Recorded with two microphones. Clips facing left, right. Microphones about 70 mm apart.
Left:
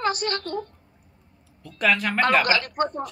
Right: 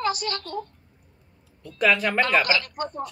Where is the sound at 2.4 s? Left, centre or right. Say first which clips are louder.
Left 2 dB; left.